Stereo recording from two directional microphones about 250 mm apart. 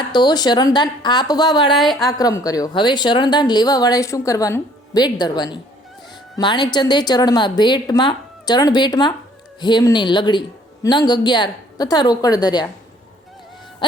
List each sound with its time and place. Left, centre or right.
0.1 s a woman's voice: centre
1.7 s a woman's voice: centre
2.0 s a woman's voice: centre